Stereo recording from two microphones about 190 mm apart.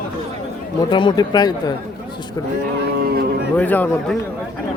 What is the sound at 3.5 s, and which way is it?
Speech, 10° left (ahead or behind).